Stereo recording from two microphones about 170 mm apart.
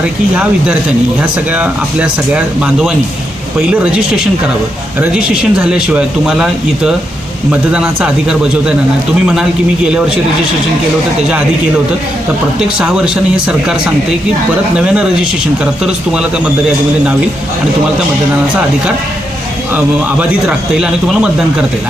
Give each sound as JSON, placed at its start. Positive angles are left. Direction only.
{"t": 0.0, "sound": "speech", "side_deg": -5}
{"t": 12.5, "sound": "speech", "side_deg": -5}
{"t": 19.7, "sound": "speech", "side_deg": -5}